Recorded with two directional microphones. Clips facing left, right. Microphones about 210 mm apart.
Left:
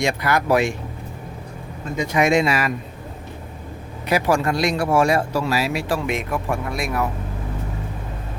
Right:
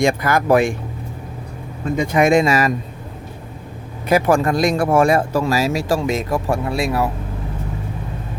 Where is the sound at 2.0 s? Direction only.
50° right (ahead or behind).